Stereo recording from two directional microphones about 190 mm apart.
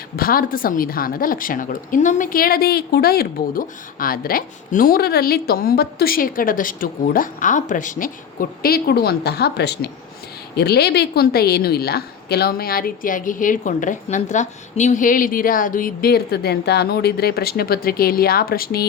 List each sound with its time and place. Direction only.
0.2 s a woman's voice: 50° left (ahead or behind)